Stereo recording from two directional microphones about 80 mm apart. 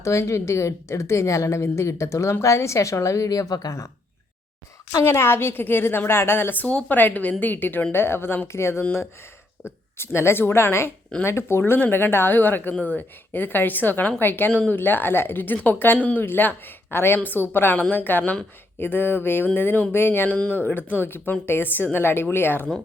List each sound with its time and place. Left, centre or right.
0.0 s a woman's voice: left
5.0 s a woman's voice: left